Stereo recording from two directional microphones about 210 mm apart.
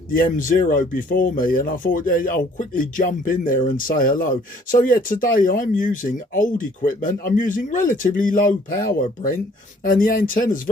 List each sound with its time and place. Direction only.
0.1 s speech: 40° left (ahead or behind)